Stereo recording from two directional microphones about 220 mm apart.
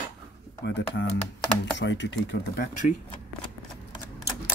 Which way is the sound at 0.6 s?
55° left (ahead or behind).